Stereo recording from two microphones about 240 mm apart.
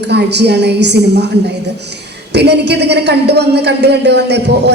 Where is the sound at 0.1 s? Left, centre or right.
Right.